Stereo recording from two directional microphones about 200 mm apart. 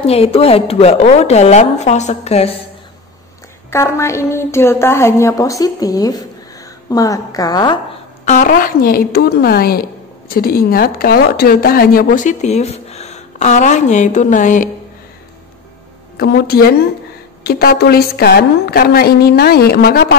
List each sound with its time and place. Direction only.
0.0 s a woman's voice: 30° left (ahead or behind)
3.7 s a woman's voice: 15° left (ahead or behind)
8.3 s a woman's voice: 45° left (ahead or behind)
16.2 s a woman's voice: 50° left (ahead or behind)